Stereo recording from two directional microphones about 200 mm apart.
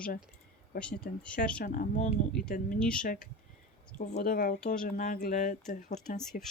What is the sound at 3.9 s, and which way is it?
Speech, 45° left (ahead or behind).